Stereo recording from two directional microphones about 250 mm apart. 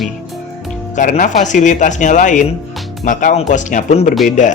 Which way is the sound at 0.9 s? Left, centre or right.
Left.